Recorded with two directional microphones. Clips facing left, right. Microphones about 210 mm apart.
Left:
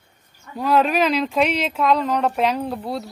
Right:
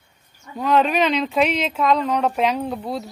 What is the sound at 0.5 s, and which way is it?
A woman's voice, 5° left (ahead or behind).